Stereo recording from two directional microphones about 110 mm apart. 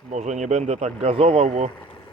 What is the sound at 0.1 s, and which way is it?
Speech, 90° right.